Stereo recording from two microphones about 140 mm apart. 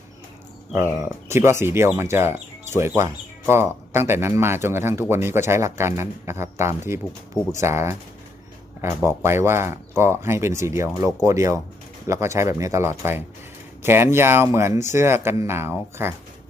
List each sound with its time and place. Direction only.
1.3 s speech: 20° right (ahead or behind)
9.0 s speech: 20° right (ahead or behind)